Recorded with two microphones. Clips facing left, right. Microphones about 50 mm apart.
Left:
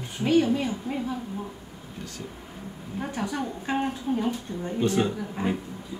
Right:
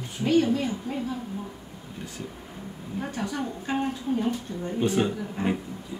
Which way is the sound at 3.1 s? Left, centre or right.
Left.